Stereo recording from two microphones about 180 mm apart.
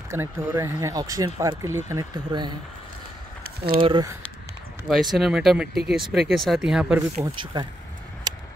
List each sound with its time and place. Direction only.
0.1 s speech: 15° right (ahead or behind)
3.8 s speech: 25° right (ahead or behind)
4.8 s speech: centre (ahead or behind)
7.2 s speech: 25° right (ahead or behind)
8.3 s a sound: 20° right (ahead or behind)